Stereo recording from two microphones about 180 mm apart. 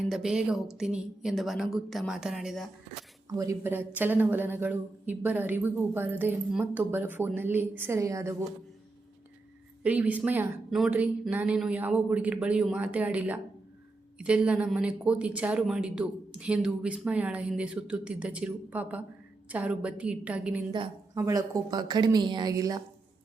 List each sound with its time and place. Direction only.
0.1 s speech: 5° right (ahead or behind)
3.2 s speech: 20° right (ahead or behind)
9.8 s speech: 10° right (ahead or behind)
20.7 s a woman's voice: 25° right (ahead or behind)
21.2 s a woman's voice: 15° right (ahead or behind)